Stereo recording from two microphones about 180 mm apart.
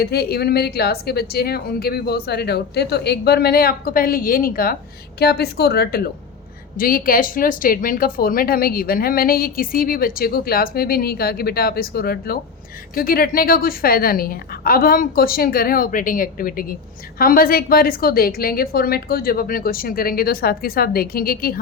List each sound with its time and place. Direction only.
0.0 s speech: 60° left (ahead or behind)